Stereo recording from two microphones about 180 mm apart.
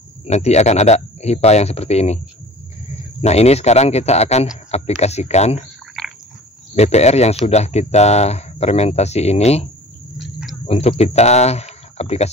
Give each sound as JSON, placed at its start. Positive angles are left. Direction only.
{"t": 0.2, "sound": "speech", "side_deg": 35}
{"t": 3.2, "sound": "speech", "side_deg": 35}
{"t": 6.0, "sound": "a sound", "side_deg": 0}
{"t": 6.7, "sound": "speech", "side_deg": 35}
{"t": 10.1, "sound": "a sound", "side_deg": 0}
{"t": 10.7, "sound": "speech", "side_deg": 35}